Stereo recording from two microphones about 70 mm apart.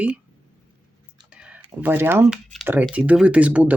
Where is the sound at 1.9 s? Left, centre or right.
Right.